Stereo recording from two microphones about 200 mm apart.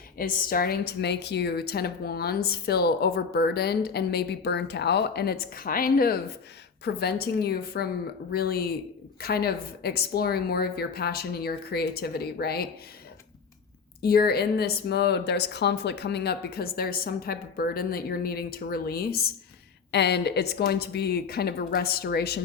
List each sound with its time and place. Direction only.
0.2 s a woman's voice: 45° left (ahead or behind)
14.0 s a woman's voice: 50° left (ahead or behind)